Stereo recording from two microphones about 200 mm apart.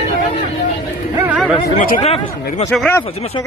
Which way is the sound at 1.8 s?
35° left (ahead or behind).